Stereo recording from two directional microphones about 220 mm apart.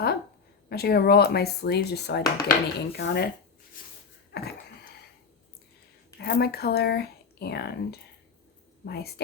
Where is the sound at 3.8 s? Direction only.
40° left (ahead or behind).